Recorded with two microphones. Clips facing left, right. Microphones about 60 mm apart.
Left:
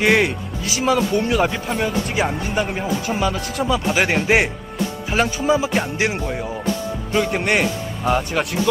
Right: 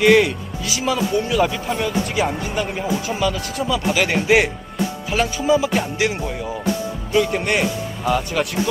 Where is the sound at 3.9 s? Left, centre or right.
Left.